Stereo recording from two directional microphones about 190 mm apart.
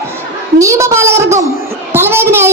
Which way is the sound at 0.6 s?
15° right (ahead or behind).